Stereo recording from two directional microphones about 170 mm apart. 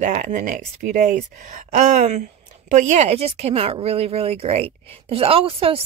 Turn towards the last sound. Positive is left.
turn(degrees=-35)  # may be behind; listen again after turning